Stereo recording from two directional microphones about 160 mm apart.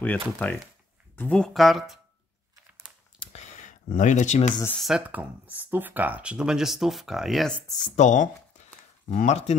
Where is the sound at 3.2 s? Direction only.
45° left (ahead or behind).